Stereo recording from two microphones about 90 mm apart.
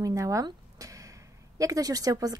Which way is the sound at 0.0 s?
35° right (ahead or behind).